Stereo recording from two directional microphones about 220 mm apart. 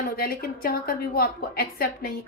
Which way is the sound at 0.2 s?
45° left (ahead or behind).